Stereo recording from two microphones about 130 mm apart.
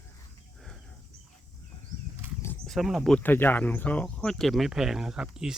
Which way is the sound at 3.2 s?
15° left (ahead or behind).